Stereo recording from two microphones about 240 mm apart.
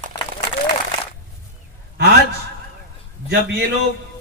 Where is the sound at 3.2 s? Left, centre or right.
Right.